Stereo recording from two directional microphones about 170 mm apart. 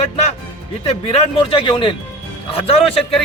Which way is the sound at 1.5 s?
30° left (ahead or behind).